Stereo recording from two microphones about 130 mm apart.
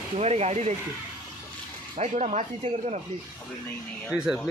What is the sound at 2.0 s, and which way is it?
Speech, 60° right (ahead or behind).